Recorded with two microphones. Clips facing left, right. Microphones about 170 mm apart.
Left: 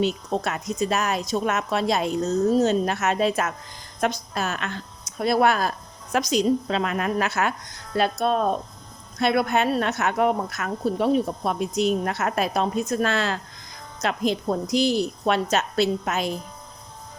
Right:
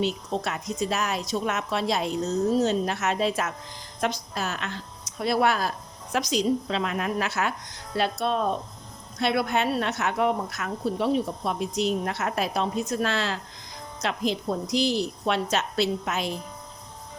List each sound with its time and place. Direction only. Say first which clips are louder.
0.0 s speech: left 3 dB; 50° left (ahead or behind)